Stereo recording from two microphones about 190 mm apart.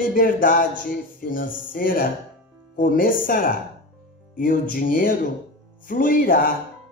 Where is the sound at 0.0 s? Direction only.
45° left (ahead or behind).